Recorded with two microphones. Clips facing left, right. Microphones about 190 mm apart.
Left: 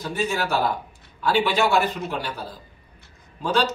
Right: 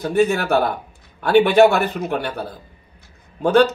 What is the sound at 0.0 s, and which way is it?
Speech, 60° right (ahead or behind).